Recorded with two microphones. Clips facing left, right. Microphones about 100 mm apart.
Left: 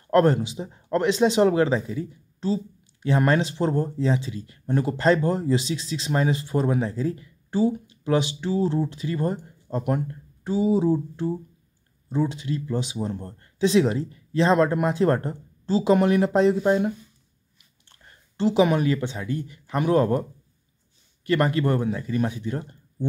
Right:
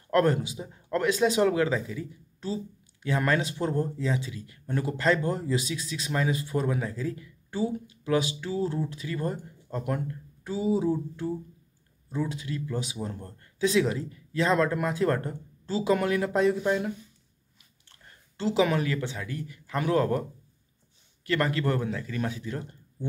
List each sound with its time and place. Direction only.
0.1 s a man's voice: 25° left (ahead or behind)
18.4 s a man's voice: 20° left (ahead or behind)
21.3 s a man's voice: 20° left (ahead or behind)